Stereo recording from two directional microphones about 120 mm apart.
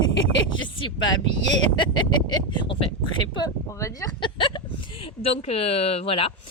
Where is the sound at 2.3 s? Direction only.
40° left (ahead or behind).